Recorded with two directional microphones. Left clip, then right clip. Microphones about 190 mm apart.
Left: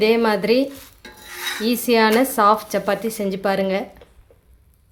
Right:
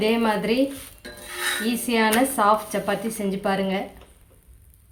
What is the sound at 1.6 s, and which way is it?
Speech, 50° left (ahead or behind).